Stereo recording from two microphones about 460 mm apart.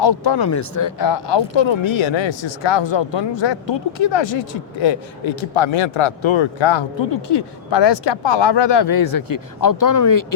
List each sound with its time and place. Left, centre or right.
0.0 s speech: left